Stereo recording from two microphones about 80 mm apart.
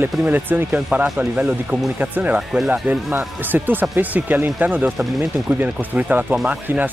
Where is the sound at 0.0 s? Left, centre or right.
Right.